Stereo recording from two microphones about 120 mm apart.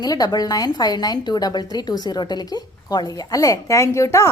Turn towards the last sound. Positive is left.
turn(degrees=25)  # may be behind; listen again after turning